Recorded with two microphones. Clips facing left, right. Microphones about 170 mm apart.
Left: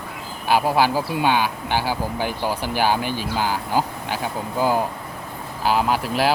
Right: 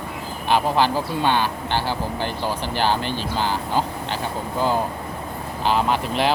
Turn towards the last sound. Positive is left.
turn(degrees=5)  # may be behind; listen again after turning